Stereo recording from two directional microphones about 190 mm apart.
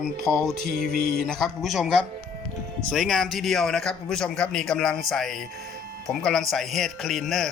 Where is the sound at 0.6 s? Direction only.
55° right (ahead or behind).